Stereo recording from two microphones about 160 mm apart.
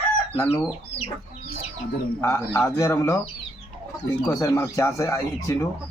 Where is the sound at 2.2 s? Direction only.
20° left (ahead or behind).